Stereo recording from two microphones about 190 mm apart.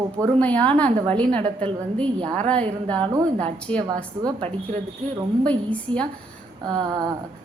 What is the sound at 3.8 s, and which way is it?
Speech, 20° right (ahead or behind).